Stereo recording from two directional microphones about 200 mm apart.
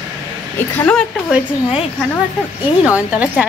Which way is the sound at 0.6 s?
10° left (ahead or behind).